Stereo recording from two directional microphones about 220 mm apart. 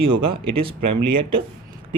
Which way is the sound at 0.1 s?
25° right (ahead or behind).